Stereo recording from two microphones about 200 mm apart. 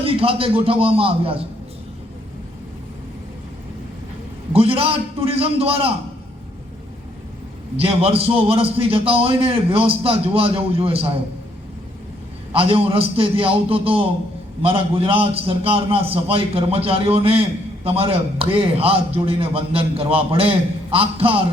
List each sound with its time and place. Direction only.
0.0 s a man's voice: 25° right (ahead or behind)
4.5 s a man's voice: 30° right (ahead or behind)
7.8 s a man's voice: 30° right (ahead or behind)
12.5 s a man's voice: 25° right (ahead or behind)